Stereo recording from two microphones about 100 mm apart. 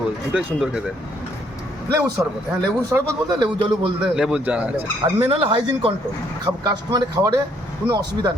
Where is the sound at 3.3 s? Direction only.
55° right (ahead or behind).